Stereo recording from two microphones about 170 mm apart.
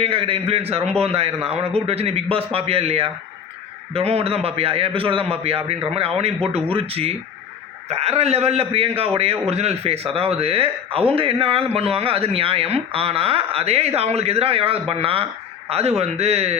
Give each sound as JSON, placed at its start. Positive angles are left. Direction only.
{"t": 0.0, "sound": "speech", "side_deg": -35}